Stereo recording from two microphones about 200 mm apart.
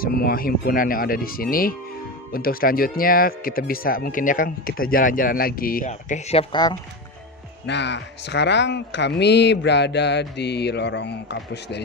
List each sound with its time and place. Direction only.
0.0 s speech: 50° left (ahead or behind)
6.5 s speech: 20° left (ahead or behind)
7.6 s speech: 60° left (ahead or behind)